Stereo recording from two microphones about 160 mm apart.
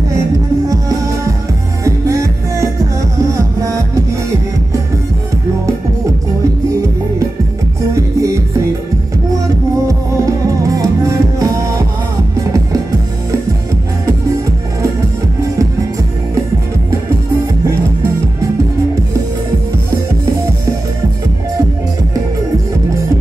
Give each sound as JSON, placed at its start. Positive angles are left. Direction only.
{"t": 0.7, "sound": "music", "side_deg": -20}
{"t": 7.9, "sound": "music", "side_deg": -20}
{"t": 9.8, "sound": "music", "side_deg": -20}